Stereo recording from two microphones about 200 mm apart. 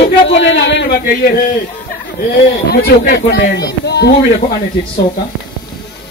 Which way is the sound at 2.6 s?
50° left (ahead or behind).